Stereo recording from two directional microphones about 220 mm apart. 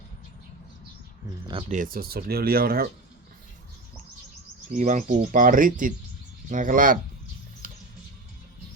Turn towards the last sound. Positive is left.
turn(degrees=-40)  # may be behind; listen again after turning